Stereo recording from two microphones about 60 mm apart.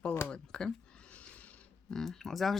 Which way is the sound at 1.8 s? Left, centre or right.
Centre.